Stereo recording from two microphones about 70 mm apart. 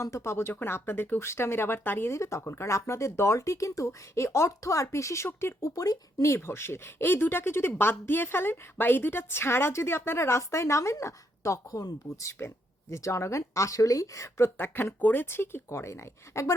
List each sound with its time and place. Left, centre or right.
0.0 s a woman's voice: left
6.3 s a woman's voice: left